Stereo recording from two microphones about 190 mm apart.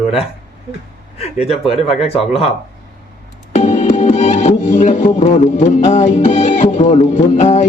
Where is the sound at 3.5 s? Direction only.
40° left (ahead or behind).